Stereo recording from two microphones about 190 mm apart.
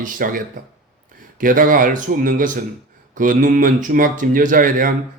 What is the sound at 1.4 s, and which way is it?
Speech, 45° right (ahead or behind).